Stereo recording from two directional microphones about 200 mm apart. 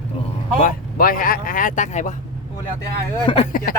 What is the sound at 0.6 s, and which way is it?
Speech, 45° left (ahead or behind).